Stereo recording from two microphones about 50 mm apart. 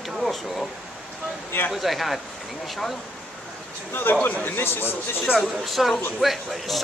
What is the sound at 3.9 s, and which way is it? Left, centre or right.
A man's voice, left.